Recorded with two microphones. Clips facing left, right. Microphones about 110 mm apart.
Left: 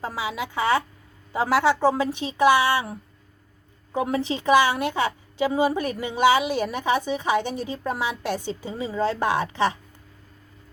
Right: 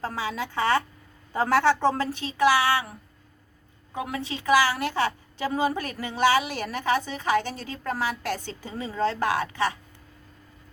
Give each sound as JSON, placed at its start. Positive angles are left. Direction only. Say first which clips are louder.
{"t": 0.0, "sound": "a woman's voice", "louder": "left 1 dB", "side_deg": 10}
{"t": 3.9, "sound": "a woman's voice", "louder": "left 7 dB", "side_deg": 30}